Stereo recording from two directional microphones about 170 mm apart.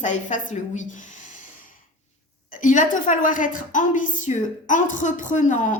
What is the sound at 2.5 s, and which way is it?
A woman's voice, 50° left (ahead or behind).